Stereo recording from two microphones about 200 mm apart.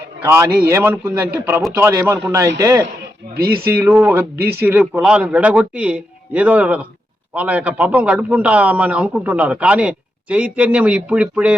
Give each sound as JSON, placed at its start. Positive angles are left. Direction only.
{"t": 0.3, "sound": "a man's voice", "side_deg": -15}
{"t": 3.3, "sound": "speech", "side_deg": -50}
{"t": 3.7, "sound": "a man's voice", "side_deg": -10}